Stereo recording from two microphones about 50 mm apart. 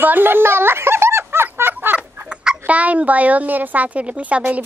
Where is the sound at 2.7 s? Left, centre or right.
Right.